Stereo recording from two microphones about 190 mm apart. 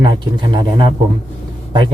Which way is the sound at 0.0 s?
20° right (ahead or behind).